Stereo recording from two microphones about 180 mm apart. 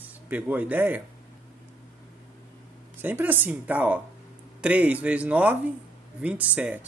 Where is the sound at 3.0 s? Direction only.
10° right (ahead or behind).